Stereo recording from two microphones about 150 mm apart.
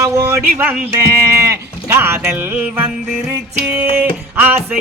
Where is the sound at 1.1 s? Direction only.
20° right (ahead or behind).